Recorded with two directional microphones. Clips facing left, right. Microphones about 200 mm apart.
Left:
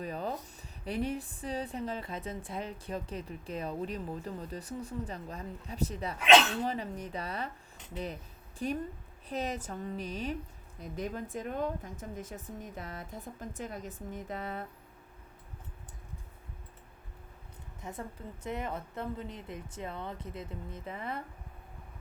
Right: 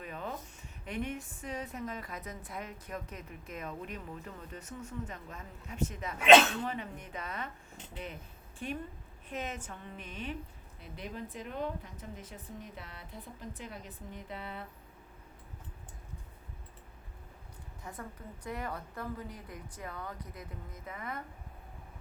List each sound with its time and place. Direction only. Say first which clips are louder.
0.0 s a sound: left 5 dB; 35° left (ahead or behind)
0.9 s a woman's voice: left 4 dB; 35° left (ahead or behind)
17.8 s speech: left 3 dB; 20° left (ahead or behind)